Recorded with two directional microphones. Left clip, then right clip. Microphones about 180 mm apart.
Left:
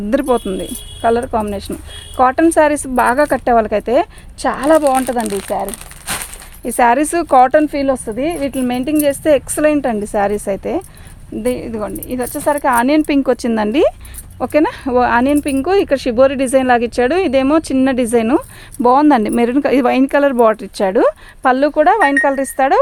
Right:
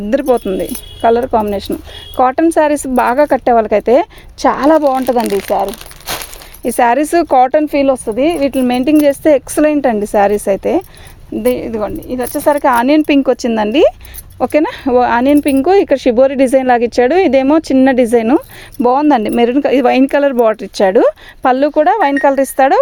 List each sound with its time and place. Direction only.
0.1 s speech: 25° right (ahead or behind); by 6.2 s 65° right (ahead or behind)
6.7 s a woman's voice: 40° right (ahead or behind)
14.3 s a woman's voice: 35° right (ahead or behind)